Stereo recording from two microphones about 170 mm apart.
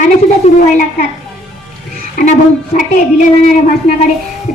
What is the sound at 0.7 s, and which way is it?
Speech, 50° left (ahead or behind).